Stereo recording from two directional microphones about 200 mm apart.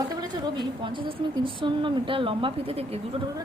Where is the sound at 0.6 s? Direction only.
25° right (ahead or behind).